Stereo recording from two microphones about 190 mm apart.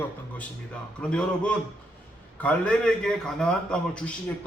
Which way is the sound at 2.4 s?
5° left (ahead or behind).